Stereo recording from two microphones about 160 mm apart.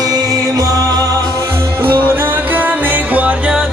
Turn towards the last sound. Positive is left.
turn(degrees=-5)  # may be behind; listen again after turning